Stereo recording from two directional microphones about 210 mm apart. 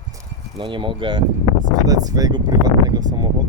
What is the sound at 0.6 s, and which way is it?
Speech, 25° right (ahead or behind).